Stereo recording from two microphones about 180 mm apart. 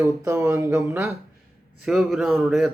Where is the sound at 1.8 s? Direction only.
Centre (ahead or behind).